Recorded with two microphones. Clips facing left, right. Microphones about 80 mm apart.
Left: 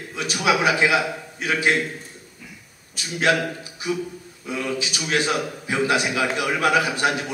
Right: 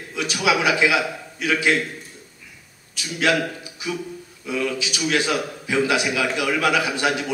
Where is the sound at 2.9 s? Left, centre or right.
Left.